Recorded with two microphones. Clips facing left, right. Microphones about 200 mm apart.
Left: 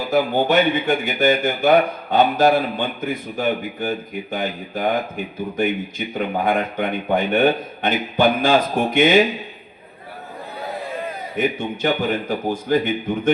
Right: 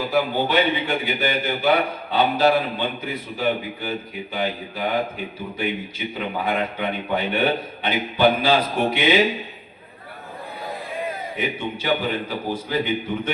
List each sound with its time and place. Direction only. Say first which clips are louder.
0.1 s a man's voice: left 5 dB; 45° left (ahead or behind)
11.3 s a man's voice: left 8 dB; 45° left (ahead or behind)